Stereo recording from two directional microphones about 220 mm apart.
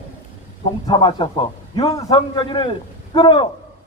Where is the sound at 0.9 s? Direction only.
25° left (ahead or behind).